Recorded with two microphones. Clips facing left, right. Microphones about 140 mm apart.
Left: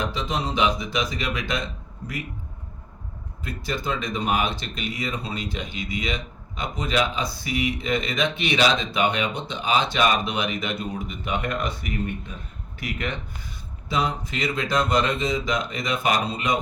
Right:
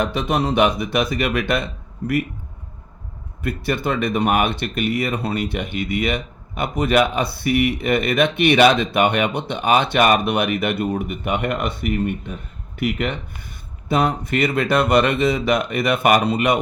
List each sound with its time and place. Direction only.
0.0 s speech: 65° right (ahead or behind)
3.4 s speech: 65° right (ahead or behind)